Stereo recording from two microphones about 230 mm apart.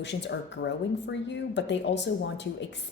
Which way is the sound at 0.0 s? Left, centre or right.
Left.